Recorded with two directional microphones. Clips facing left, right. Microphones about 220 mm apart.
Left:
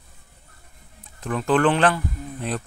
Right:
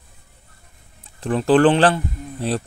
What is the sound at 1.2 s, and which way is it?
Speech, 30° right (ahead or behind).